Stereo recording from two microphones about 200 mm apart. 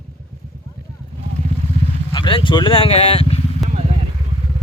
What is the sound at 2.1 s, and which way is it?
Speech, 25° left (ahead or behind).